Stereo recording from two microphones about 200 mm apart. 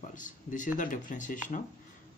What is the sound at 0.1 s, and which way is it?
Speech, 40° left (ahead or behind).